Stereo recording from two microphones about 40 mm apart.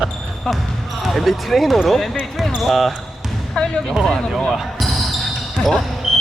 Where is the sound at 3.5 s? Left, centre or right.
Centre.